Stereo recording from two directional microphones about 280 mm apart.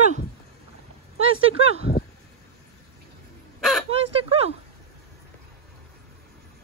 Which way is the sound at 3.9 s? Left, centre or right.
Right.